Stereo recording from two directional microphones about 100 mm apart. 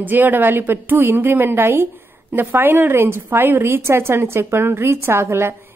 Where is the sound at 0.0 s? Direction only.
20° right (ahead or behind).